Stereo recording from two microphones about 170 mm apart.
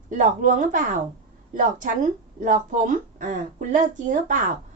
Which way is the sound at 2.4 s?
50° right (ahead or behind).